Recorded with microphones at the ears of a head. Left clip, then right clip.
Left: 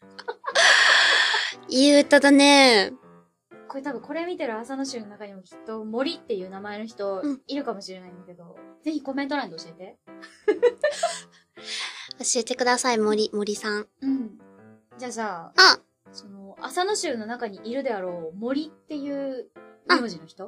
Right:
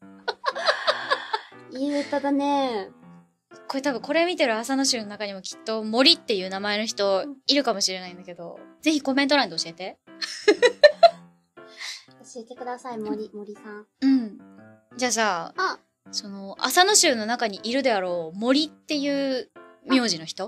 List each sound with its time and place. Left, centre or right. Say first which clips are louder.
0.6 s music: left 10 dB; left
3.6 s speech: right 6 dB; right
11.1 s music: left 6 dB; left
15.0 s speech: right 8 dB; right